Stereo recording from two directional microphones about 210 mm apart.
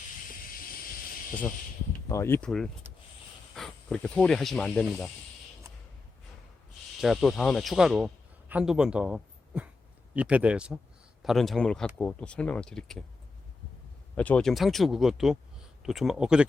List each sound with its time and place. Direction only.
2.0 s speech: 15° left (ahead or behind)
7.0 s speech: centre (ahead or behind)
14.2 s speech: 5° left (ahead or behind)